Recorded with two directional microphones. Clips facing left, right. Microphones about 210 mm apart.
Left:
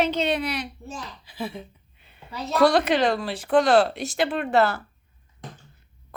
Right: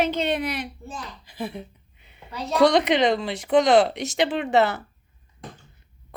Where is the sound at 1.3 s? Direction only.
15° right (ahead or behind).